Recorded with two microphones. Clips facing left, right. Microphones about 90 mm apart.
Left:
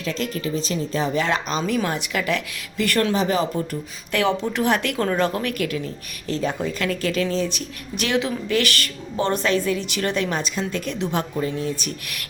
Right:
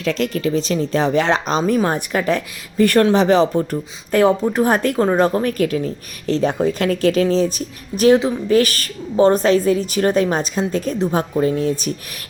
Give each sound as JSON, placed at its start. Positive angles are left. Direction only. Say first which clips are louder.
{"t": 0.2, "sound": "speech", "louder": "right 6 dB", "side_deg": -45}